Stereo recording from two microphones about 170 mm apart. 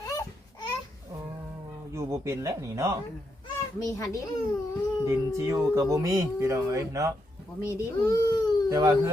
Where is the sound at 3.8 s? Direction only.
20° left (ahead or behind).